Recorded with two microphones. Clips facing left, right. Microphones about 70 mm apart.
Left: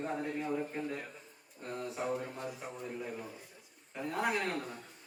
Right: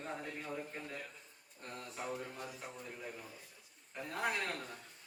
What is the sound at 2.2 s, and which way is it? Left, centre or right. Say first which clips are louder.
A man's voice: left 5 dB; centre.